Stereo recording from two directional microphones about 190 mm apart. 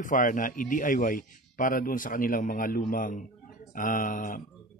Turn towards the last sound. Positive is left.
turn(degrees=45)  # may be behind; listen again after turning